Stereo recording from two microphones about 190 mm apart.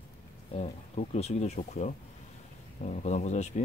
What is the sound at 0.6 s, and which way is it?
Speech, 35° left (ahead or behind).